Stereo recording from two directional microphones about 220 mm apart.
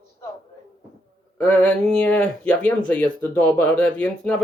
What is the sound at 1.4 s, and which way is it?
Speech, 5° left (ahead or behind).